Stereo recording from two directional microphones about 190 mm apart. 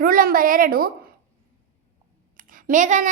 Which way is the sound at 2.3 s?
45° right (ahead or behind).